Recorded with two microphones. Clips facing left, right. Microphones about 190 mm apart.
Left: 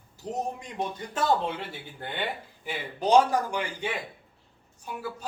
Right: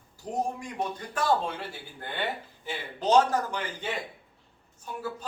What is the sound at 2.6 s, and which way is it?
A man's voice, 15° left (ahead or behind).